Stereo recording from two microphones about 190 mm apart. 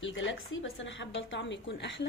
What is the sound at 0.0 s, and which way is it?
A woman's voice, 75° left (ahead or behind).